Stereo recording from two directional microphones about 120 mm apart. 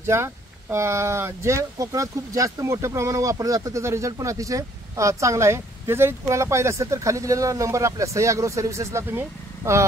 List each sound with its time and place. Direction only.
0.0 s speech: 20° right (ahead or behind)